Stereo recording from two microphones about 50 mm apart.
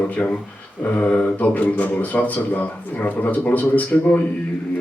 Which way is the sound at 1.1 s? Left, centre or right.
Left.